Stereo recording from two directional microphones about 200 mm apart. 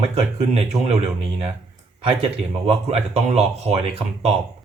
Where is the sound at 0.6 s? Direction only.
35° right (ahead or behind).